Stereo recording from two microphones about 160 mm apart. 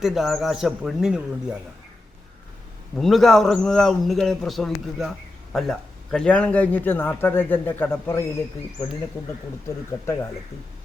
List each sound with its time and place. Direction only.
0.0 s a man's voice: centre (ahead or behind)
2.9 s a man's voice: centre (ahead or behind)